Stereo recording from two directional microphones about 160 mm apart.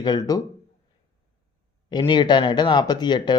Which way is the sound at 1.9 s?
25° left (ahead or behind).